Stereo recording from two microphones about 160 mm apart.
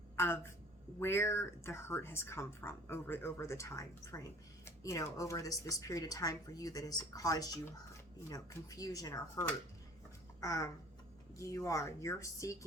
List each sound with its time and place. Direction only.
0.2 s a woman's voice: 15° left (ahead or behind)